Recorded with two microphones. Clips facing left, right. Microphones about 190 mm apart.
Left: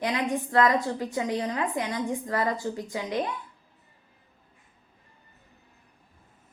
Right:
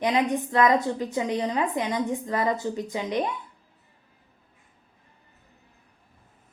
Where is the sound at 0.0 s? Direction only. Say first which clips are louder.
Right 4 dB; 20° right (ahead or behind).